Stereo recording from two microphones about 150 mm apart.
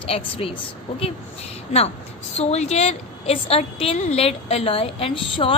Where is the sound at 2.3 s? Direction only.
45° left (ahead or behind).